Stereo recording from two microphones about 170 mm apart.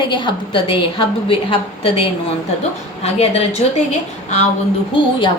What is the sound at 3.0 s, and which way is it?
Speech, 40° left (ahead or behind).